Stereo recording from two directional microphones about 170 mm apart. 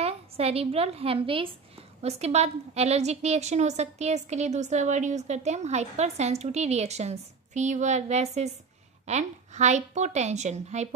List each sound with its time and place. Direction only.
0.0 s a woman's voice: 35° right (ahead or behind)